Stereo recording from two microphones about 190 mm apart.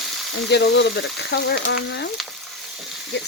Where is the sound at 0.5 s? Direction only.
65° left (ahead or behind).